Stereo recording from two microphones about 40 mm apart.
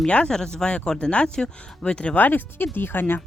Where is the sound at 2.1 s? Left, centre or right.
Left.